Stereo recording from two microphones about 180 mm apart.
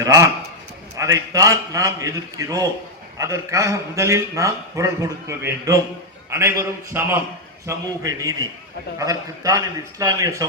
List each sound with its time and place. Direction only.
0.0 s a man's voice: 20° right (ahead or behind)